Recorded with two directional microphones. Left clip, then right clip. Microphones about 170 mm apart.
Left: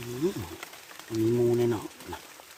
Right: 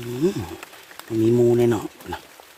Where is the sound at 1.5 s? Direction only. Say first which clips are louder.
Right 7 dB; 60° right (ahead or behind).